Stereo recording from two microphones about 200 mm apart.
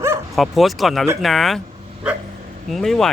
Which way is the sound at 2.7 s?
Centre (ahead or behind).